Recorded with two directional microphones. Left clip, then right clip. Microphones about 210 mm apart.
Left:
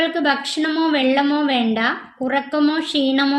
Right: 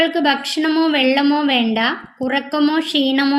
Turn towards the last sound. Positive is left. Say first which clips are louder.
# right 1 dB
turn(degrees=-30)  # may be behind; listen again after turning